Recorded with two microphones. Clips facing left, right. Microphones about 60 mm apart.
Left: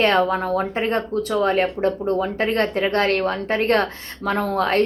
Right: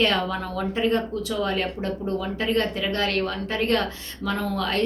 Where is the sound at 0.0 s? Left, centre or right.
Left.